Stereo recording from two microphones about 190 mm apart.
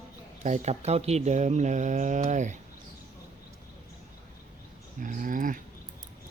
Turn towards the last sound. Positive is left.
turn(degrees=-45)  # may be behind; listen again after turning